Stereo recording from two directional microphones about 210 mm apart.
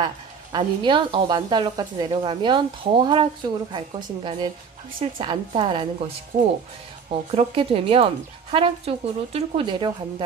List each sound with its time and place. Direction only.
0.0 s a woman's voice: 20° right (ahead or behind)
7.1 s a woman's voice: 30° right (ahead or behind)